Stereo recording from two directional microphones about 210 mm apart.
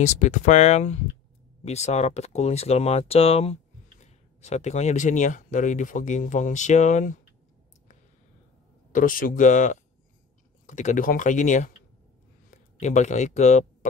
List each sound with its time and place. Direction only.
0.0 s speech: 35° left (ahead or behind)
8.9 s speech: 40° left (ahead or behind)
12.8 s speech: 35° left (ahead or behind)